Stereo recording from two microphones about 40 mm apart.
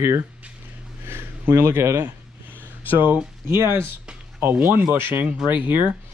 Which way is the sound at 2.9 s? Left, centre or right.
Right.